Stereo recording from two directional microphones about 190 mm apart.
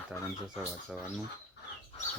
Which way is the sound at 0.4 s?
Centre (ahead or behind).